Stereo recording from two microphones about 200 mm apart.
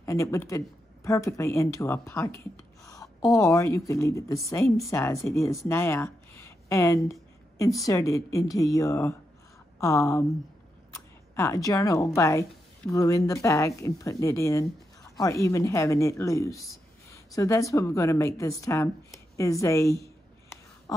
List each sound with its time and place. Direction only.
0.0 s speech: 15° left (ahead or behind)